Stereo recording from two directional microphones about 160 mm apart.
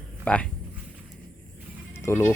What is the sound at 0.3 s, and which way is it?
Speech, 10° left (ahead or behind).